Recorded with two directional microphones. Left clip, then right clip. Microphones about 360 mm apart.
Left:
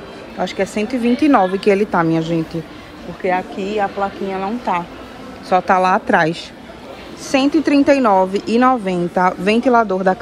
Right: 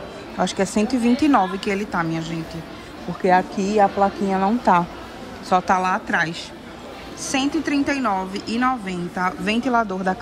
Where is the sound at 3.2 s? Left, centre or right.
Centre.